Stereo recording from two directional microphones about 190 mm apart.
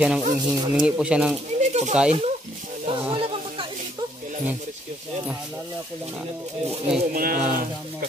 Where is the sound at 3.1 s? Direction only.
25° right (ahead or behind).